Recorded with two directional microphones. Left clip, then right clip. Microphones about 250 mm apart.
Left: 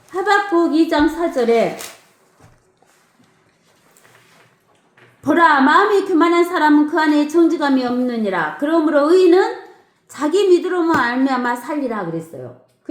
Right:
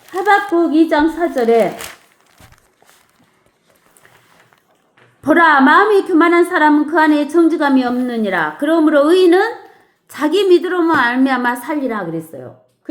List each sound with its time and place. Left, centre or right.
0.1 s a woman's voice: right
5.2 s a woman's voice: right